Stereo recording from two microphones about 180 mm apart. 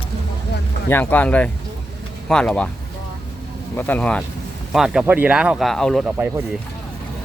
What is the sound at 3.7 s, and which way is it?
Speech, 10° left (ahead or behind).